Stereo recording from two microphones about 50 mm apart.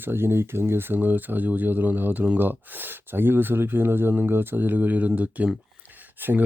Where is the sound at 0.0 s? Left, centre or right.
Right.